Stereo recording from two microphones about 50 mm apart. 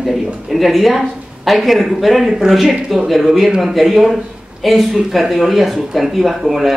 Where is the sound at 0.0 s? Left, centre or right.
Centre.